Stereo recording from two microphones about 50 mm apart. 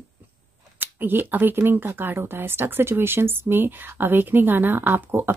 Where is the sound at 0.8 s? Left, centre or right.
Right.